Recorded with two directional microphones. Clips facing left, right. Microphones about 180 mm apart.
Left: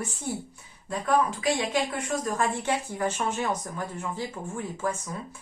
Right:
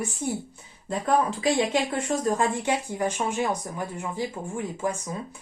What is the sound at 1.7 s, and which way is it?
Speech, 25° right (ahead or behind).